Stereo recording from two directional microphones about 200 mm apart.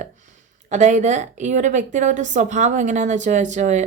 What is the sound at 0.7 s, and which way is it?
A woman's voice, 35° right (ahead or behind).